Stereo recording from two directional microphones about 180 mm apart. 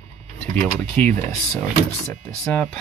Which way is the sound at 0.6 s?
10° left (ahead or behind).